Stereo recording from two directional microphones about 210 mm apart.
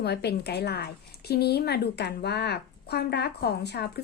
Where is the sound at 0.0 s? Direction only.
50° left (ahead or behind).